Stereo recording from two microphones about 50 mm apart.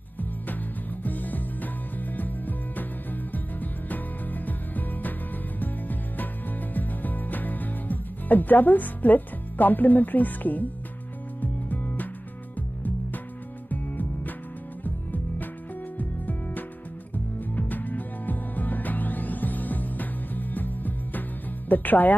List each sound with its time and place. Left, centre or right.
1.0 s music: left
11.7 s music: left
13.7 s music: left